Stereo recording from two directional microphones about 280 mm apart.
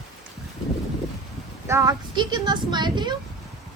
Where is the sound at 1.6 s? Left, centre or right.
Centre.